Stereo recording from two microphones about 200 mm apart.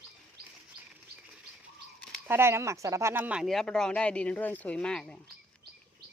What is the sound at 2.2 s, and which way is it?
Speech, 10° right (ahead or behind).